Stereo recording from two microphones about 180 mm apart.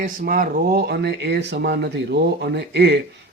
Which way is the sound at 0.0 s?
50° right (ahead or behind).